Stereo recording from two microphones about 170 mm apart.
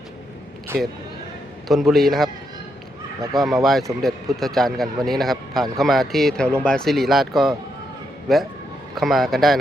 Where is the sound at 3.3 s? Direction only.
Centre (ahead or behind).